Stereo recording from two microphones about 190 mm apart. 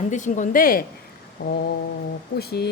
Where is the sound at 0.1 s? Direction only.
40° left (ahead or behind).